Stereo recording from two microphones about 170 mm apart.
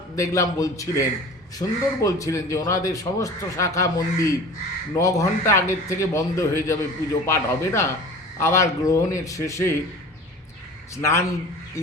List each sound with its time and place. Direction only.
0.2 s a man's voice: 20° left (ahead or behind)
10.9 s a man's voice: 15° left (ahead or behind)